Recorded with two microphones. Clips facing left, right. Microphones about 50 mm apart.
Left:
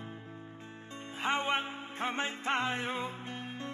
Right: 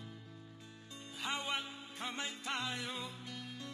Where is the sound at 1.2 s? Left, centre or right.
Left.